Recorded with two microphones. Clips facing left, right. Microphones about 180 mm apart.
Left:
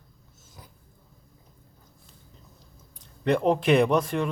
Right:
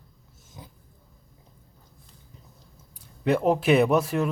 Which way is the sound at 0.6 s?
20° right (ahead or behind).